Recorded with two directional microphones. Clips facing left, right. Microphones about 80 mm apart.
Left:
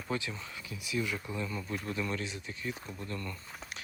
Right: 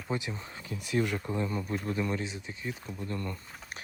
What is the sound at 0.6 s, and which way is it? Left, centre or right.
Speech, right.